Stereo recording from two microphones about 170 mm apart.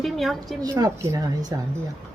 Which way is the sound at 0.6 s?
20° right (ahead or behind).